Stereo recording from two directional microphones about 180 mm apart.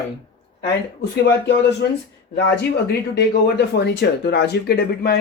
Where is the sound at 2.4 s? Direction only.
65° left (ahead or behind).